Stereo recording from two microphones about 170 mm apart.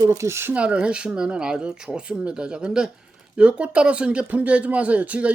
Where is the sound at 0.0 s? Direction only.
20° right (ahead or behind).